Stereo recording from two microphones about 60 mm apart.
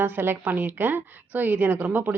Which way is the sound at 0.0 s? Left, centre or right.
Right.